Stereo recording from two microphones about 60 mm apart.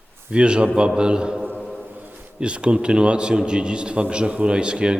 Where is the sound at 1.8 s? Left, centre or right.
Right.